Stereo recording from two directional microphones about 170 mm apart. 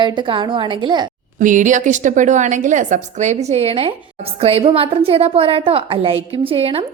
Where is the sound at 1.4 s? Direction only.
50° right (ahead or behind); by 6.8 s 35° right (ahead or behind).